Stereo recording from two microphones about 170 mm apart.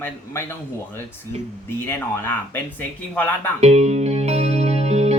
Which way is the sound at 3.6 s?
40° right (ahead or behind).